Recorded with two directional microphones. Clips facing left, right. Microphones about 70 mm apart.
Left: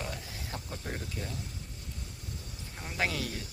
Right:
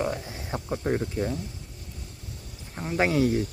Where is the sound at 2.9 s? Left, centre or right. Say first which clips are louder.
Right 10 dB; right.